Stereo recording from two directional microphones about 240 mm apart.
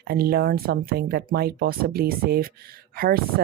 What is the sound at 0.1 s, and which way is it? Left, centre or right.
Speech, right.